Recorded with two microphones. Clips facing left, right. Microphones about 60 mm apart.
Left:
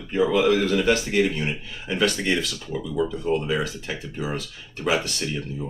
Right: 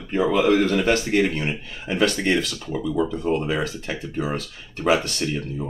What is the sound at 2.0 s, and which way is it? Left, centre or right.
Speech, right.